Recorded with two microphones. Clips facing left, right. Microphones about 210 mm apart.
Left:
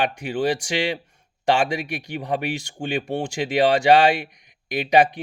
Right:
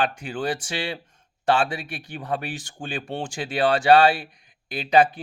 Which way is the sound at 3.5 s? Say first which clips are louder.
Left 1 dB; 15° left (ahead or behind).